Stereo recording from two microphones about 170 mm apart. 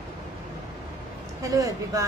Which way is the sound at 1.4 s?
20° right (ahead or behind).